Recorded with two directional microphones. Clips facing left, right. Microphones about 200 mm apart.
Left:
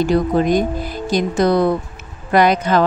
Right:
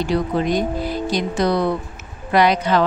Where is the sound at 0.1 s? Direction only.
45° left (ahead or behind).